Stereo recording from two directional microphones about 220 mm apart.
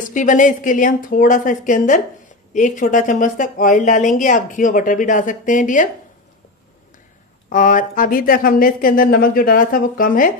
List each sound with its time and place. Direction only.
0.1 s speech: 35° left (ahead or behind)
7.4 s speech: 35° left (ahead or behind)